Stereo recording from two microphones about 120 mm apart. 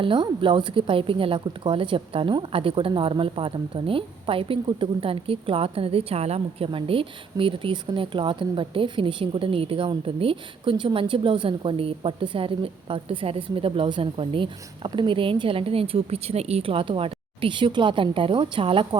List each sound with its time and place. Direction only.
0.0 s speech: 45° right (ahead or behind)
6.7 s speech: 50° right (ahead or behind)